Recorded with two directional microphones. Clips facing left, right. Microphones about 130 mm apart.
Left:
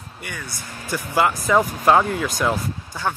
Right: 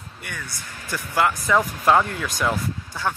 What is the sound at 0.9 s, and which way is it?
Speech, 15° left (ahead or behind).